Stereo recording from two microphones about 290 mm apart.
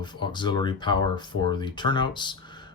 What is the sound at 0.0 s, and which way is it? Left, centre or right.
Speech, centre.